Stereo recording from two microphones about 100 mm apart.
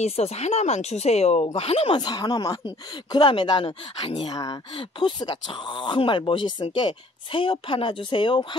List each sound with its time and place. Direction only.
0.0 s speech: 90° left
2.0 s speech: 45° left (ahead or behind)
4.7 s speech: 55° left (ahead or behind)